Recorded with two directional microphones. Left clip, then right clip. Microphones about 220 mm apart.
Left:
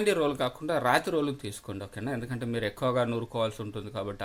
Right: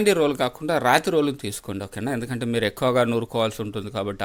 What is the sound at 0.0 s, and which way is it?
Speech, 40° right (ahead or behind).